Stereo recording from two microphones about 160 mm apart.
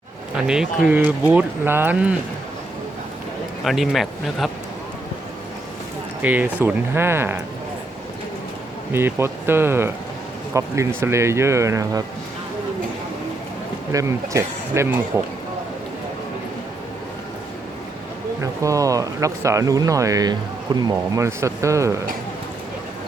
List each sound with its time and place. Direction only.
0.3 s speech: 5° right (ahead or behind)
3.6 s speech: centre (ahead or behind)
6.2 s speech: 10° right (ahead or behind)
8.9 s speech: 15° right (ahead or behind)
13.9 s speech: 20° right (ahead or behind)
18.6 s speech: 20° right (ahead or behind)